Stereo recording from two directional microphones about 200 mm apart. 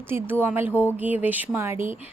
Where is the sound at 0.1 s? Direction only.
10° right (ahead or behind).